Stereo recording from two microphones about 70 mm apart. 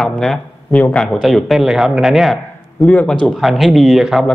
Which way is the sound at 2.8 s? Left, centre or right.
Centre.